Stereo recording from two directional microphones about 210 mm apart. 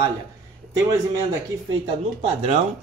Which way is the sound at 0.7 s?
15° right (ahead or behind).